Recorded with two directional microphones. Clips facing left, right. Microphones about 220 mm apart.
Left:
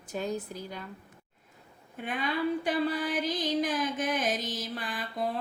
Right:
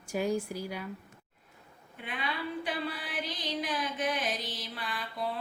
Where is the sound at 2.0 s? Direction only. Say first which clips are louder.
Left 7 dB; 45° left (ahead or behind).